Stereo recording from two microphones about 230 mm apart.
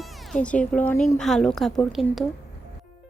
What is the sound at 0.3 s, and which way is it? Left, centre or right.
A woman's voice, centre.